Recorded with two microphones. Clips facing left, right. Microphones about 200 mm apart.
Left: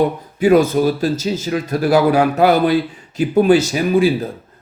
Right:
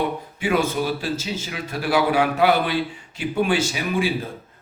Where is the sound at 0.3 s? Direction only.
40° left (ahead or behind).